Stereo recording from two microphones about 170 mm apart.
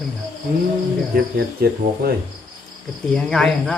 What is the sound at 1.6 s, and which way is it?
Speech, 65° right (ahead or behind).